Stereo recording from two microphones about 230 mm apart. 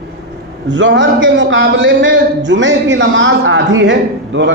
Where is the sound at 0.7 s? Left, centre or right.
Right.